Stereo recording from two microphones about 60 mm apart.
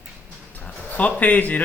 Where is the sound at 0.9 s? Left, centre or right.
Left.